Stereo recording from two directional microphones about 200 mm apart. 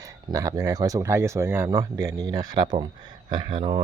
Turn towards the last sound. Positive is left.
turn(degrees=-25)  # may be behind; listen again after turning